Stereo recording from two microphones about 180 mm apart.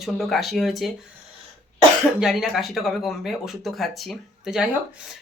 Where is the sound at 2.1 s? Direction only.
5° right (ahead or behind).